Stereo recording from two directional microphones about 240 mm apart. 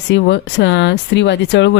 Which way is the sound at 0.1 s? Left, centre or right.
Left.